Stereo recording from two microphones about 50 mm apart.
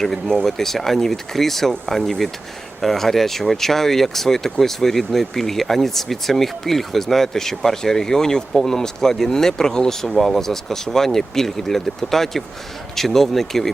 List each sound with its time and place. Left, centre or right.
0.0 s speech: centre